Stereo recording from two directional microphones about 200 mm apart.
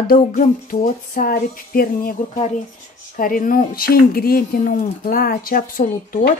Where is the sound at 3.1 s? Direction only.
45° left (ahead or behind).